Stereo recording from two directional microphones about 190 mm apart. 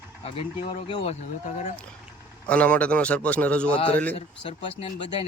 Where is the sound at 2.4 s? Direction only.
5° left (ahead or behind).